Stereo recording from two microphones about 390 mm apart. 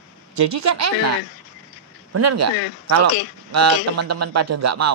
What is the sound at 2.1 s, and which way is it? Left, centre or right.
A woman's voice, right.